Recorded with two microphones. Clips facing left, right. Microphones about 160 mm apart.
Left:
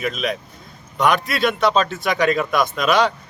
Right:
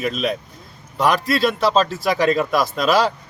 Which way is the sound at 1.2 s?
30° right (ahead or behind).